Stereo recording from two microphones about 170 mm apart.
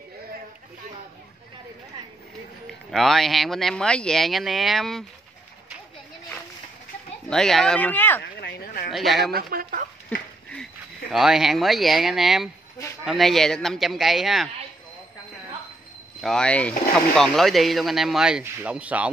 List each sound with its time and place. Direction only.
2.6 s speech: centre (ahead or behind)
7.2 s speech: 5° left (ahead or behind)
8.4 s speech: 60° left (ahead or behind)
8.9 s speech: centre (ahead or behind)
9.3 s speech: 60° right (ahead or behind)
10.5 s speech: centre (ahead or behind)
16.2 s speech: 5° left (ahead or behind)